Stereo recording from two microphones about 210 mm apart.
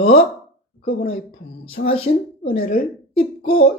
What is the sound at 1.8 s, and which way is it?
Speech, 25° left (ahead or behind).